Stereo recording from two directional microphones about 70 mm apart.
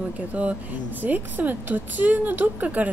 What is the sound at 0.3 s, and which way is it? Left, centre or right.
A woman's voice, centre.